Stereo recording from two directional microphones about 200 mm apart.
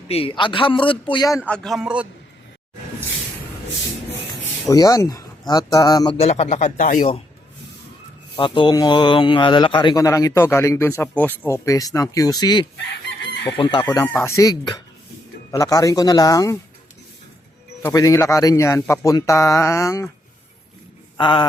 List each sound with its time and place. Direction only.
0.1 s speech: 25° left (ahead or behind)
1.5 s a man's voice: 5° left (ahead or behind)
4.7 s speech: 20° left (ahead or behind)
6.1 s speech: 30° left (ahead or behind)
8.4 s speech: 25° left (ahead or behind)
17.8 s speech: 15° left (ahead or behind)
21.2 s speech: 25° left (ahead or behind)